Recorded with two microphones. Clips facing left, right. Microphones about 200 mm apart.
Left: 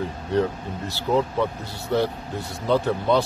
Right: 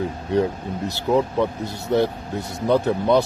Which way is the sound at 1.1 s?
15° right (ahead or behind).